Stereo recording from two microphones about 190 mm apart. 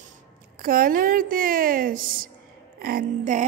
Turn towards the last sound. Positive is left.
turn(degrees=-45)  # may be behind; listen again after turning